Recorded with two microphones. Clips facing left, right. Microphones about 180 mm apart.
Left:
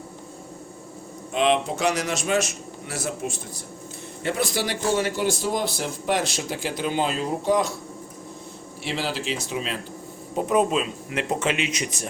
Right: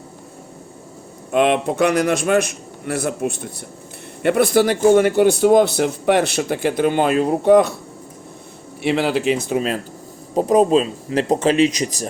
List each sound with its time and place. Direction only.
1.3 s speech: 55° right (ahead or behind)
8.8 s speech: 60° right (ahead or behind)
10.3 s speech: 35° right (ahead or behind)